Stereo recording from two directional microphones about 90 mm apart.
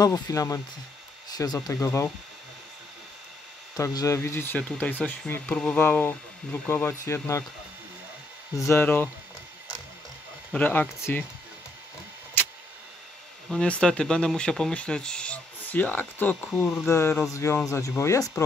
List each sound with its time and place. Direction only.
0.0 s speech: 40° left (ahead or behind)
3.7 s speech: 40° left (ahead or behind)
8.6 s speech: 25° left (ahead or behind)
10.5 s speech: 20° left (ahead or behind)
13.5 s speech: 10° left (ahead or behind); by 18.3 s 35° left (ahead or behind)